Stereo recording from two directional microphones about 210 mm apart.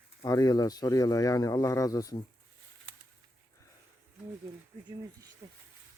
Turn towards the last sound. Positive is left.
turn(degrees=-15)  # may be behind; listen again after turning